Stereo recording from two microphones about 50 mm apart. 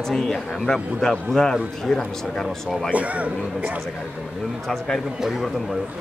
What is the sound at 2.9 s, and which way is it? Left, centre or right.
Speech, right.